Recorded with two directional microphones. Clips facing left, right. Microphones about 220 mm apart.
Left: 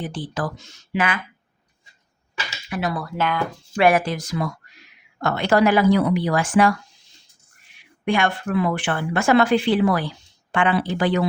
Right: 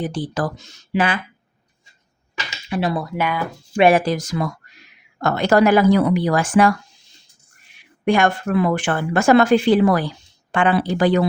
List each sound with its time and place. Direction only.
0.0 s speech: 40° right (ahead or behind)
2.6 s speech: 30° right (ahead or behind); by 3.4 s 10° right (ahead or behind)
3.8 s speech: 25° right (ahead or behind)
4.0 s speech: 40° right (ahead or behind)
8.0 s speech: 45° right (ahead or behind)